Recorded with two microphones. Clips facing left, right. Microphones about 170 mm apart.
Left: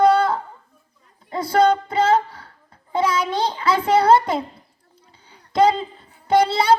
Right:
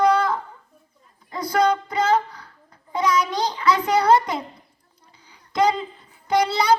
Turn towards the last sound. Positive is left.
turn(degrees=30)  # may be behind; listen again after turning